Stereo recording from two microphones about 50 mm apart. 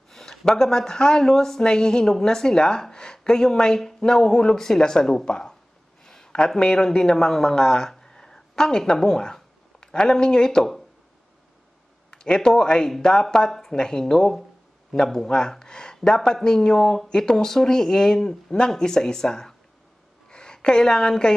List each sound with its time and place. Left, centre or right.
0.1 s a sound: centre
0.5 s a man's voice: centre
12.1 s a woman's voice: centre